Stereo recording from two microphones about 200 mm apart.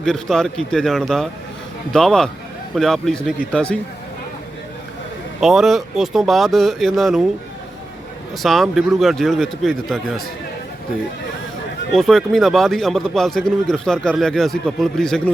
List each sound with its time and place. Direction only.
0.0 s speech: 5° left (ahead or behind)
5.4 s speech: centre (ahead or behind)
8.4 s speech: centre (ahead or behind)
11.9 s speech: centre (ahead or behind)